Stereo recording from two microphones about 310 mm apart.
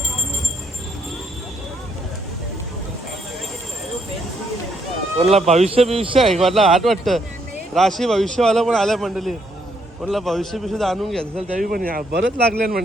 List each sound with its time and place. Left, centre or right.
5.2 s speech: right
6.4 s a man's voice: centre
11.7 s speech: right